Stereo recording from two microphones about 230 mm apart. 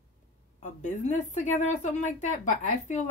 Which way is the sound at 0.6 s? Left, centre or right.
Left.